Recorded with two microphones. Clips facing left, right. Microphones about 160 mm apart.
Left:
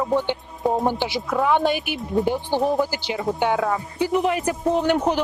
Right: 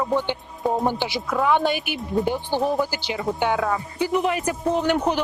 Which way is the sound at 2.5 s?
10° left (ahead or behind).